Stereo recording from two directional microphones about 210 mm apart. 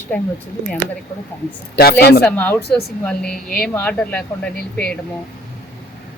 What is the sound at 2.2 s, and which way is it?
Speech, 10° left (ahead or behind).